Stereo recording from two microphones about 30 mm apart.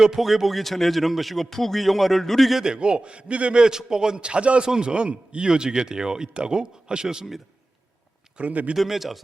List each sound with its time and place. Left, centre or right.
0.0 s speech: centre
0.4 s a man's voice: centre
2.7 s a man's voice: right
3.5 s speech: right
4.2 s a man's voice: right
4.6 s a man's voice: right
5.5 s speech: right
8.4 s a man's voice: right
8.9 s speech: centre